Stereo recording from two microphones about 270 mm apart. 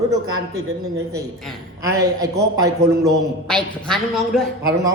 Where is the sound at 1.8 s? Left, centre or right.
Centre.